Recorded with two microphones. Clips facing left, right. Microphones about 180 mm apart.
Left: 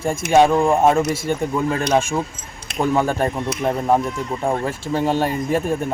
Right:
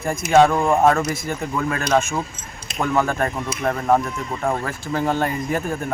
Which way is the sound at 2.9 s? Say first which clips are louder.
Even; 30° left (ahead or behind).